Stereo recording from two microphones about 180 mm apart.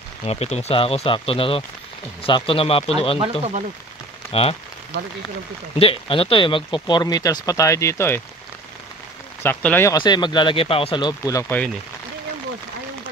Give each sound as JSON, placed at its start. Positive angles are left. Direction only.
{"t": 0.2, "sound": "speech", "side_deg": 35}
{"t": 3.2, "sound": "speech", "side_deg": -35}
{"t": 4.3, "sound": "speech", "side_deg": 35}
{"t": 5.8, "sound": "speech", "side_deg": 30}
{"t": 9.4, "sound": "speech", "side_deg": 10}
{"t": 9.9, "sound": "speech", "side_deg": 25}